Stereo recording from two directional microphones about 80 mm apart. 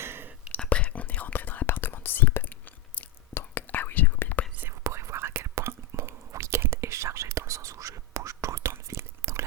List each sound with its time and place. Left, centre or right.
0.0 s whispering: right
0.5 s whispering: centre
4.8 s whispering: right